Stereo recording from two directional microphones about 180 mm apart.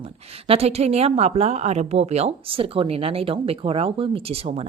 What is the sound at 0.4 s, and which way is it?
A woman's voice, 35° right (ahead or behind).